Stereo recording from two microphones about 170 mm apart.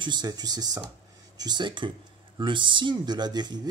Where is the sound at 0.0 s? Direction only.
25° right (ahead or behind).